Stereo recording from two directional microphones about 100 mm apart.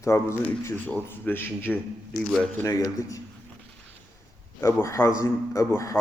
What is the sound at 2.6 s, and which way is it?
Speech, 35° left (ahead or behind).